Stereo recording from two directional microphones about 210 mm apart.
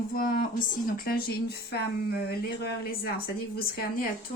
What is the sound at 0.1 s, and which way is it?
Speech, 45° left (ahead or behind).